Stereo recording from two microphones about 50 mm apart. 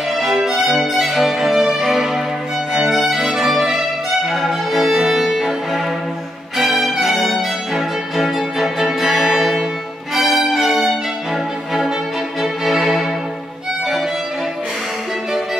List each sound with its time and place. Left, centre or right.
0.1 s violin: centre
4.3 s music: centre
10.1 s violin: centre
12.4 s music: centre